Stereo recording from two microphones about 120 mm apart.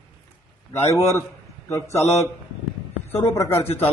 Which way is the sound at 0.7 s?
25° left (ahead or behind).